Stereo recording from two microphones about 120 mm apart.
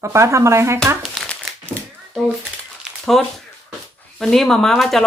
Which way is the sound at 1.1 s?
5° left (ahead or behind).